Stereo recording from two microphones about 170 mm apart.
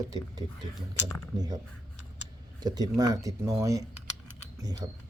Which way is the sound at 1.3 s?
20° right (ahead or behind).